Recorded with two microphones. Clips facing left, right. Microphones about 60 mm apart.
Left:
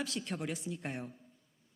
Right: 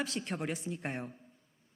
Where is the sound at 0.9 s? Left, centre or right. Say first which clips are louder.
Right 2 dB; right.